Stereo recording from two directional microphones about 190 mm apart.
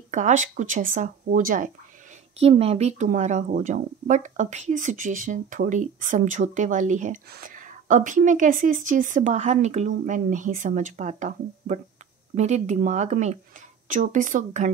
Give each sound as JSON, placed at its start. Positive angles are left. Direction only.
{"t": 0.1, "sound": "speech", "side_deg": -40}
{"t": 2.3, "sound": "speech", "side_deg": -30}
{"t": 7.2, "sound": "speech", "side_deg": -50}